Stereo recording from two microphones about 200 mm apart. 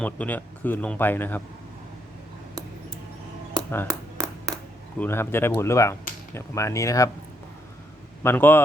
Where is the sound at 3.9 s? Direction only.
15° right (ahead or behind).